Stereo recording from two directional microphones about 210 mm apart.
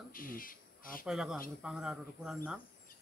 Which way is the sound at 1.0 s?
Centre (ahead or behind).